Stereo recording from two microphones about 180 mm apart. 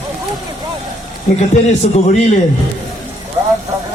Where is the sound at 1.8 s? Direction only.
40° left (ahead or behind).